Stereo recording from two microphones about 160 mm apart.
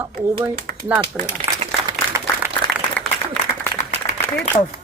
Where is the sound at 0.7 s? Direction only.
75° right (ahead or behind).